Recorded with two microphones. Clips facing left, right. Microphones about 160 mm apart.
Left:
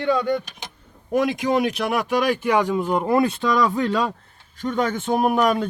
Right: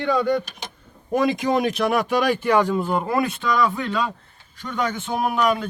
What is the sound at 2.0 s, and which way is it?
Speech, 10° left (ahead or behind).